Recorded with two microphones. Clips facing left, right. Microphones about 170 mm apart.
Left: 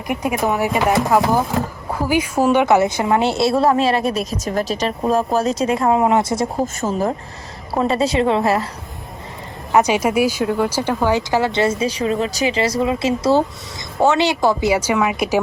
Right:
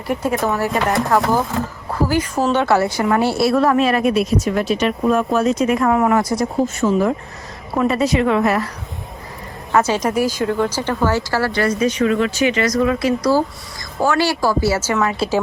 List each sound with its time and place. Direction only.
0.1 s speech: 15° left (ahead or behind)
1.1 s speech: centre (ahead or behind); by 6.5 s 25° left (ahead or behind)
6.7 s speech: 45° left (ahead or behind)
7.7 s speech: 30° left (ahead or behind)
9.7 s speech: 15° left (ahead or behind)